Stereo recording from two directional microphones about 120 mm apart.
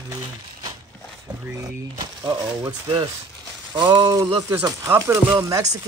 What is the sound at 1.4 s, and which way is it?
Speech, 25° right (ahead or behind).